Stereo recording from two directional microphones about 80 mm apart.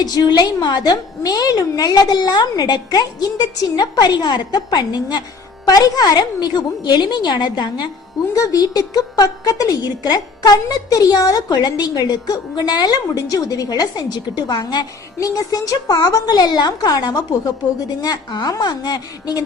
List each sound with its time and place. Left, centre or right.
0.0 s a woman's voice: left
8.4 s a woman's voice: left
15.2 s a woman's voice: left